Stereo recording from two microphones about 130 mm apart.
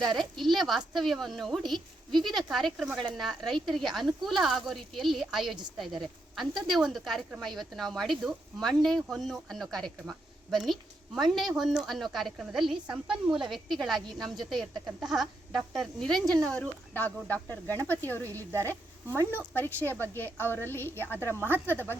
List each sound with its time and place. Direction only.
0.2 s speech: centre (ahead or behind)
16.2 s speech: 30° right (ahead or behind)
16.5 s speech: 10° left (ahead or behind)